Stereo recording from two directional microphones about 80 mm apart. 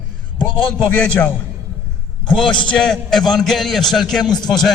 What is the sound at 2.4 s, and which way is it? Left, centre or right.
Speech, left.